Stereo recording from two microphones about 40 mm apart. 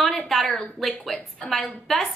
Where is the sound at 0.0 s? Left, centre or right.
Centre.